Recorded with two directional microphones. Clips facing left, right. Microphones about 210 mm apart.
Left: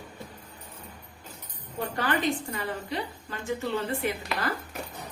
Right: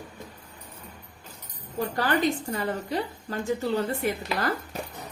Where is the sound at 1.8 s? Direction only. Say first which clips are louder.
Right 3 dB; 40° right (ahead or behind).